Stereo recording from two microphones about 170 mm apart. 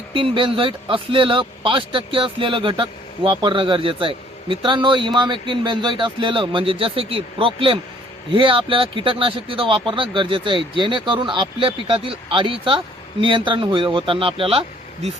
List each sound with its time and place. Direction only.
0.1 s speech: 30° right (ahead or behind)